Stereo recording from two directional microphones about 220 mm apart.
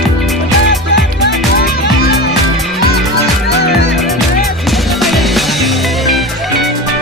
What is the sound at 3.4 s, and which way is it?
Music, 50° left (ahead or behind).